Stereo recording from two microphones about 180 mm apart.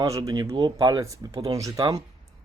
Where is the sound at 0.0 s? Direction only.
20° right (ahead or behind).